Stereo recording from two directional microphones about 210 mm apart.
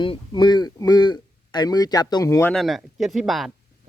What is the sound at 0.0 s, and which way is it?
Speech, 20° left (ahead or behind).